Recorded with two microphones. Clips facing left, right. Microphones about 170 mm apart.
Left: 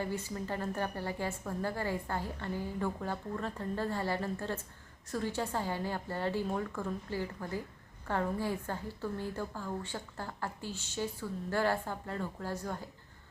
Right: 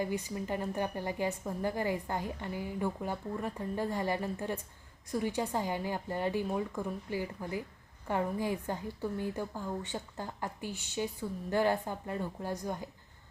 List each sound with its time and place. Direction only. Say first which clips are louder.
0.0 s a woman's voice: right 2 dB; 15° right (ahead or behind)